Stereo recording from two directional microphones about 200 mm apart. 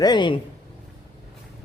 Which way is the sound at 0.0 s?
20° left (ahead or behind).